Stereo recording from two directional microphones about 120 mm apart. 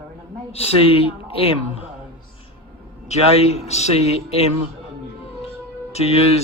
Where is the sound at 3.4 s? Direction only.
65° left (ahead or behind).